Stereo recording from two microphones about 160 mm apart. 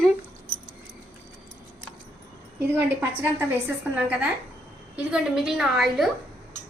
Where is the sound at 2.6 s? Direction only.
15° right (ahead or behind).